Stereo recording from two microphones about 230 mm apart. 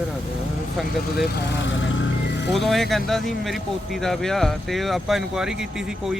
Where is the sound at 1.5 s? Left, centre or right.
Left.